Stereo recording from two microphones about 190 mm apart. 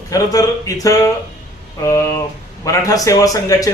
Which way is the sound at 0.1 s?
20° left (ahead or behind).